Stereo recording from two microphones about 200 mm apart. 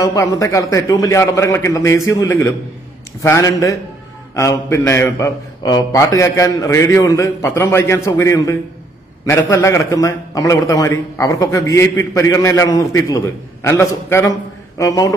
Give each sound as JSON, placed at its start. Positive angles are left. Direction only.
{"t": 0.1, "sound": "a man's voice", "side_deg": 15}